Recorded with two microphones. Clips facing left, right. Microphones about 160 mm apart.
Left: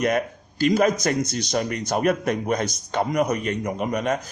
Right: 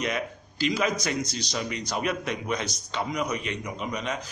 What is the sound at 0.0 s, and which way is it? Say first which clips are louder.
A man's voice: left 7 dB; 50° left (ahead or behind).